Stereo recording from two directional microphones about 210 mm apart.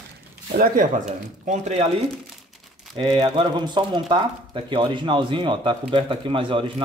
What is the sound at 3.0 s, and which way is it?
Speech, 20° right (ahead or behind).